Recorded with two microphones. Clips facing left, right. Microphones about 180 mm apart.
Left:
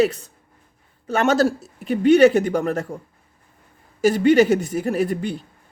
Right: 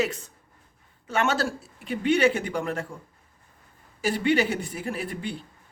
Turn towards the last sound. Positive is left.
turn(degrees=45)  # may be behind; listen again after turning